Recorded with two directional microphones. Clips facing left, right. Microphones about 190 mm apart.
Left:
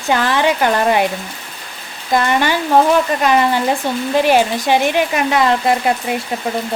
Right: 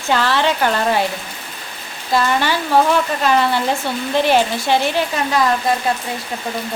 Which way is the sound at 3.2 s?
15° left (ahead or behind).